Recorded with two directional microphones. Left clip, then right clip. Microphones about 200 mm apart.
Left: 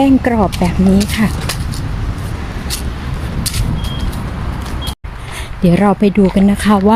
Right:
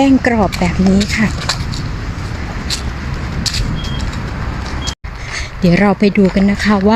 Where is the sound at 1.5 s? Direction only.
10° right (ahead or behind).